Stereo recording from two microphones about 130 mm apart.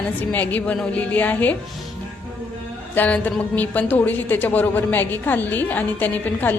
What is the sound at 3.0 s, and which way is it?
Speech, 10° left (ahead or behind).